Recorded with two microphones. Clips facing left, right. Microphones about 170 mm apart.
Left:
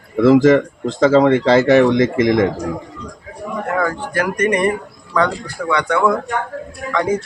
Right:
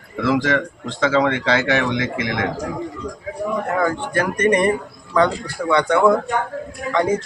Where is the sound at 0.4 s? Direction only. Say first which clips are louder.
Left 9 dB; 40° left (ahead or behind).